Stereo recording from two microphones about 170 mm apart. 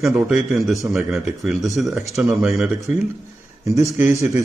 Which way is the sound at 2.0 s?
15° right (ahead or behind).